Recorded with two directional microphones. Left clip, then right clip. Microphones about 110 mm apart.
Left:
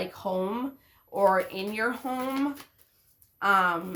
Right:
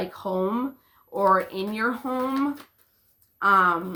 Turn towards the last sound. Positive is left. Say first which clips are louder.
# right 4 dB
turn(degrees=30)  # may be behind; listen again after turning